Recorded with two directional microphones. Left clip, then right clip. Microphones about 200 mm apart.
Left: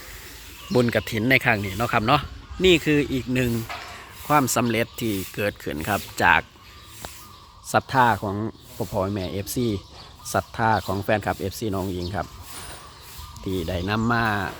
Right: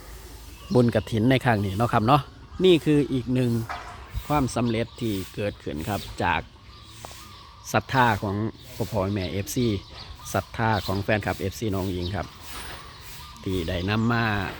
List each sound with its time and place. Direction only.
0.7 s speech: 10° right (ahead or behind)
7.7 s speech: centre (ahead or behind)
13.5 s speech: 5° left (ahead or behind)